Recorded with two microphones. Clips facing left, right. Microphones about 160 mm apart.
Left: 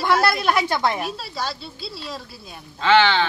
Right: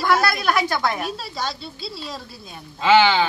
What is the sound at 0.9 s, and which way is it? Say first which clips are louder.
Speech: even; 5° left (ahead or behind).